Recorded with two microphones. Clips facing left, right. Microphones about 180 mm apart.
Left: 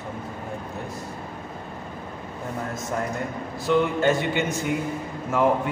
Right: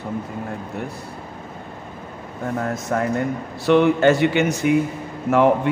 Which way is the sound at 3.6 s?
75° right (ahead or behind).